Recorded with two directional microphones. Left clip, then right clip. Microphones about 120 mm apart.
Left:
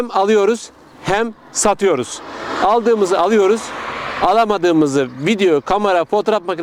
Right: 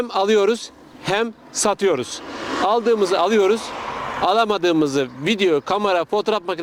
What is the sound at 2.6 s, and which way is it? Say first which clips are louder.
Speech: left 4 dB; 45° left (ahead or behind).